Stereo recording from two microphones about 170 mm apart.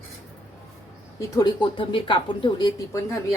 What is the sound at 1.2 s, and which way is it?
A woman's voice, 25° left (ahead or behind).